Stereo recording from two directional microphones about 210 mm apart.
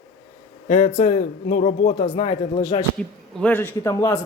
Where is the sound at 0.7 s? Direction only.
30° left (ahead or behind).